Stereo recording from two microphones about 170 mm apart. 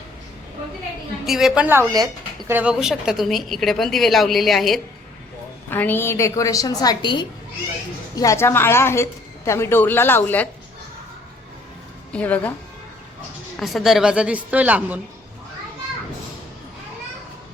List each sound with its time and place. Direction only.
1.2 s speech: centre (ahead or behind); by 2.5 s 25° right (ahead or behind)
2.5 s speech: 10° right (ahead or behind)
5.7 s a woman's voice: 10° left (ahead or behind)
12.1 s a woman's voice: 10° left (ahead or behind)
13.6 s a woman's voice: centre (ahead or behind)